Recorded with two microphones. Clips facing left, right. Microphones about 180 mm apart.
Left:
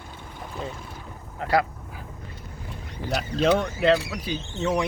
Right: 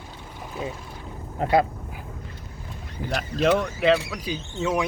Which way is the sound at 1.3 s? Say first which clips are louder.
Right 3 dB; 25° right (ahead or behind).